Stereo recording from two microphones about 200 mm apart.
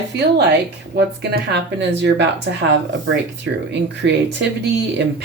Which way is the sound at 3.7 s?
60° right (ahead or behind).